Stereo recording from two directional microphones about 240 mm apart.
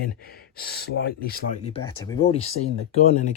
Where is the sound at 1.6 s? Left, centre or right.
Left.